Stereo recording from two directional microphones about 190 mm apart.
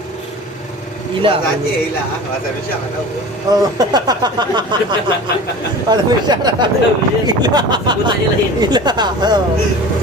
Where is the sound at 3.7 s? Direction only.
20° right (ahead or behind).